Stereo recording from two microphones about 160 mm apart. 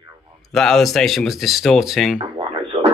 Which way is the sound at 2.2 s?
35° right (ahead or behind).